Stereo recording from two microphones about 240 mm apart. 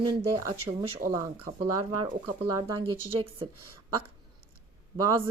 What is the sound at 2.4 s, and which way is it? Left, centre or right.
Speech, centre.